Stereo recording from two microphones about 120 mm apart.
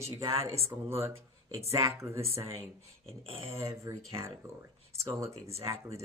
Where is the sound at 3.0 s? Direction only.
50° right (ahead or behind).